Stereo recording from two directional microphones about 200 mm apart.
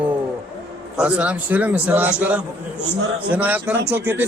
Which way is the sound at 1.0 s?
5° right (ahead or behind).